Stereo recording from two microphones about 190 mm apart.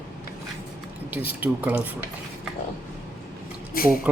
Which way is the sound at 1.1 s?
10° right (ahead or behind).